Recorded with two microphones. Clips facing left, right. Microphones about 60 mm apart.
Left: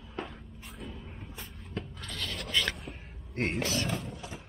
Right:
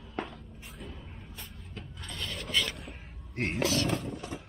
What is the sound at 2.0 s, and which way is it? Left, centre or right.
Scratch, right.